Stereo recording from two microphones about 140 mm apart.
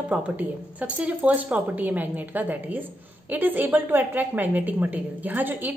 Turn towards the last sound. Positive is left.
turn(degrees=-15)  # may be behind; listen again after turning